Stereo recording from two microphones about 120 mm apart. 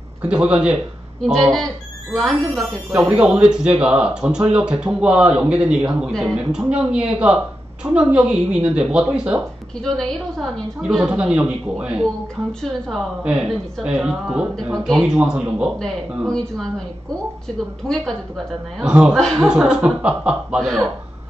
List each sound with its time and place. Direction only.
0.2 s a man's voice: 10° right (ahead or behind)
3.1 s speech: 10° right (ahead or behind)
9.8 s a man's voice: 5° left (ahead or behind)
12.6 s a man's voice: 5° left (ahead or behind)
13.2 s a man's voice: 10° right (ahead or behind)
16.3 s a man's voice: 5° left (ahead or behind)
17.8 s a man's voice: 5° left (ahead or behind)
18.8 s a man's voice: 5° right (ahead or behind)